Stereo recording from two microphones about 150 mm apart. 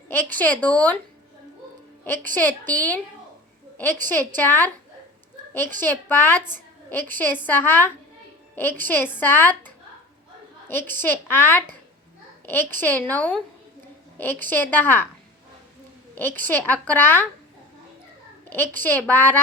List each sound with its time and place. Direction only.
0.3 s a woman's voice: 10° left (ahead or behind)
2.3 s a woman's voice: 10° left (ahead or behind)
3.9 s a woman's voice: 60° right (ahead or behind)
4.4 s a woman's voice: 15° left (ahead or behind)
5.8 s a woman's voice: 15° left (ahead or behind)
11.0 s a woman's voice: 15° left (ahead or behind)
16.1 s a woman's voice: 15° left (ahead or behind)
18.4 s a woman's voice: 15° left (ahead or behind)